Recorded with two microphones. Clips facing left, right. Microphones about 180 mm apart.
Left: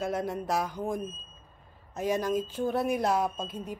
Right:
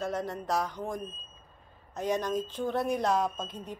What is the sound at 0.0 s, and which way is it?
A woman's voice, 10° left (ahead or behind).